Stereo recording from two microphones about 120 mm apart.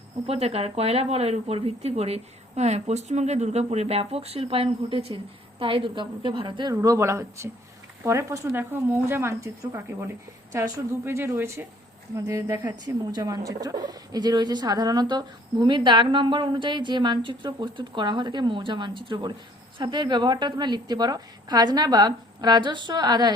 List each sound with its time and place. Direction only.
0.3 s a woman's voice: 60° right (ahead or behind); by 23.3 s 35° right (ahead or behind)